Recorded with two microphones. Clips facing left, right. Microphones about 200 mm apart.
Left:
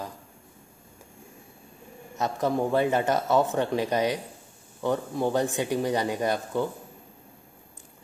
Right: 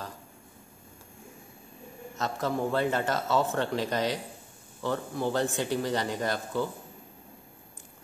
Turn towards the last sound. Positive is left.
turn(degrees=15)  # may be behind; listen again after turning